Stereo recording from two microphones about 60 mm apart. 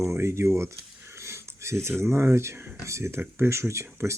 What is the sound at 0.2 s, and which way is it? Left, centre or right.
Speech, right.